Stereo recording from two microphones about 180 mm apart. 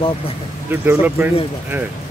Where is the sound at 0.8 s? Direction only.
10° right (ahead or behind).